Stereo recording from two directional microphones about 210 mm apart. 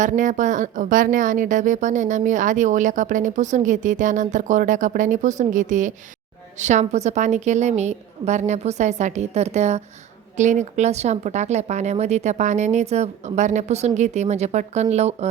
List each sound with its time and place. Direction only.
0.0 s a woman's voice: 35° right (ahead or behind)